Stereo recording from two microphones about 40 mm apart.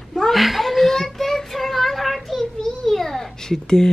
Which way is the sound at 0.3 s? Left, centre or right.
Centre.